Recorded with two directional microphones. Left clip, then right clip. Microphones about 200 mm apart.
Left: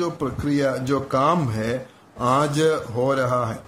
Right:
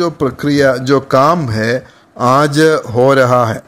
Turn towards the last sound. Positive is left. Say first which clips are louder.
# right 12 dB
turn(degrees=-40)  # may be behind; listen again after turning